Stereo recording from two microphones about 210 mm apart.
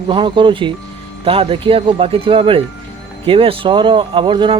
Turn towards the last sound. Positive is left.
turn(degrees=-25)  # may be behind; listen again after turning